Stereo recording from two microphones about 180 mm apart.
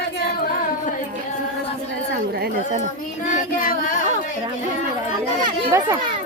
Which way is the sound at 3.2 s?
45° left (ahead or behind).